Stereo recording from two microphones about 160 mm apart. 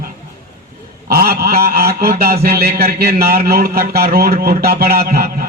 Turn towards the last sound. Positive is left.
turn(degrees=-70)  # may be behind; listen again after turning